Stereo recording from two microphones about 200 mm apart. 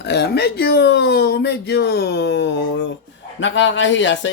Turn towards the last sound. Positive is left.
turn(degrees=65)  # may be behind; listen again after turning